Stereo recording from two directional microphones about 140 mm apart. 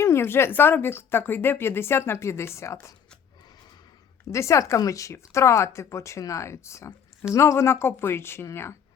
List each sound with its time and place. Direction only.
0.0 s speech: 20° left (ahead or behind)
4.3 s speech: 20° left (ahead or behind)